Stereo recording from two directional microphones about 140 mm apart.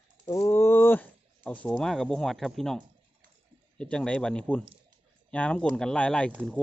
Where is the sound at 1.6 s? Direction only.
5° left (ahead or behind).